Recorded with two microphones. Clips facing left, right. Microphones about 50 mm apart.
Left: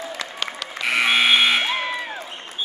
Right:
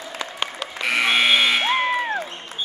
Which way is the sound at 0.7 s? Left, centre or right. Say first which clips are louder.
Left 1 dB; centre.